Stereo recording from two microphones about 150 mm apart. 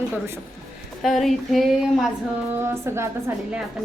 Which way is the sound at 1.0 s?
Centre (ahead or behind).